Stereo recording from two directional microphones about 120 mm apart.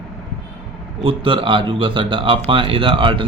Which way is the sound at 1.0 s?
45° right (ahead or behind).